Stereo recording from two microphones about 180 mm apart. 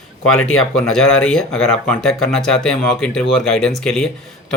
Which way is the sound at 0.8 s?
Centre (ahead or behind).